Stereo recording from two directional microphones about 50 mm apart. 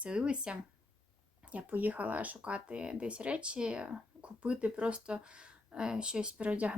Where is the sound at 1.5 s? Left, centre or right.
Right.